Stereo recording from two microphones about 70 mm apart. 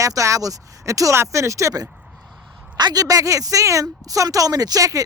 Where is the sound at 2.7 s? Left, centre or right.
Right.